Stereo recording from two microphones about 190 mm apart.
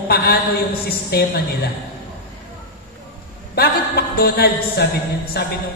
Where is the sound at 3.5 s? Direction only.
55° left (ahead or behind).